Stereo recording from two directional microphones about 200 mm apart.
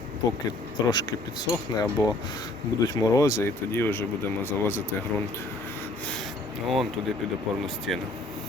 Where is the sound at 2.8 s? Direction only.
15° left (ahead or behind).